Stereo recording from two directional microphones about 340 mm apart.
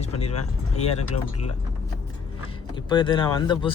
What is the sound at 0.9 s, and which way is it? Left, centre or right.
Speech, centre.